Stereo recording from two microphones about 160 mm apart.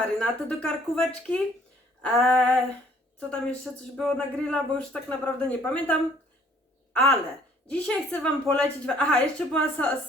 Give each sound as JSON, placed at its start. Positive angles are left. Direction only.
{"t": 0.2, "sound": "a woman's voice", "side_deg": 5}
{"t": 7.7, "sound": "a woman's voice", "side_deg": 5}